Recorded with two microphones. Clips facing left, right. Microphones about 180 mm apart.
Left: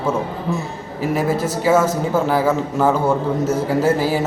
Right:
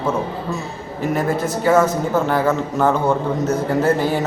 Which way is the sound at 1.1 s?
5° left (ahead or behind).